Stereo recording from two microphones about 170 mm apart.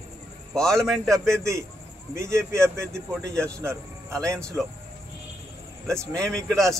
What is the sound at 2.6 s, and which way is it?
Speech, 5° left (ahead or behind).